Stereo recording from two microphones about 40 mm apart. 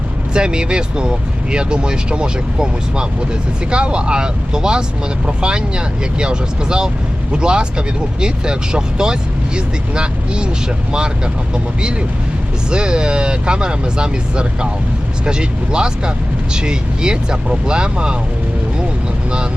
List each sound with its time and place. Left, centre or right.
0.3 s speech: right
11.5 s speech: right